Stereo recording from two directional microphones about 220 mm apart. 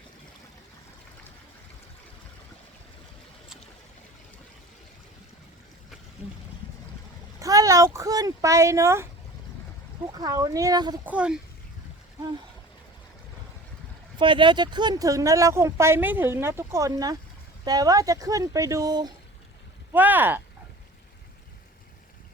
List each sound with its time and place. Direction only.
7.3 s speech: 15° right (ahead or behind)
10.2 s speech: 15° right (ahead or behind)
11.0 s speech: 5° right (ahead or behind)
14.2 s speech: 20° right (ahead or behind)
19.9 s speech: 10° right (ahead or behind)